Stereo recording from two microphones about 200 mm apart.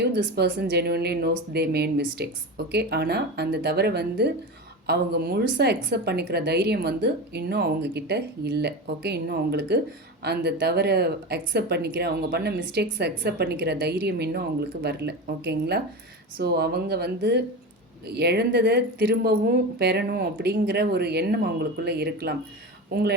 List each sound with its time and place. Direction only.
0.0 s a woman's voice: 55° right (ahead or behind)